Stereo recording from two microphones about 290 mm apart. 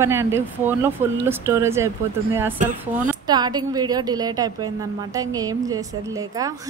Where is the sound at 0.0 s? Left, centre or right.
Centre.